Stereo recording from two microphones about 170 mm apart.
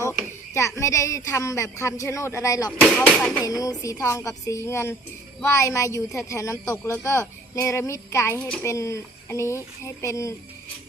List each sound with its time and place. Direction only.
0.8 s a woman's voice: 20° left (ahead or behind)
3.0 s speech: 5° left (ahead or behind)
3.4 s a woman's voice: 20° left (ahead or behind)